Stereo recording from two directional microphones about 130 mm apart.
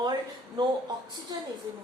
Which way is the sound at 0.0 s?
35° right (ahead or behind).